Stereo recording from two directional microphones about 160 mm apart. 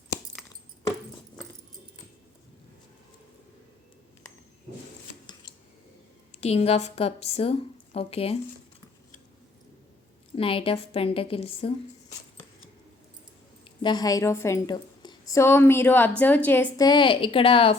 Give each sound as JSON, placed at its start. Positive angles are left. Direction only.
{"t": 6.4, "sound": "a woman's voice", "side_deg": 40}
{"t": 10.3, "sound": "a woman's voice", "side_deg": 35}
{"t": 13.8, "sound": "a woman's voice", "side_deg": 25}
{"t": 16.8, "sound": "a woman's voice", "side_deg": 30}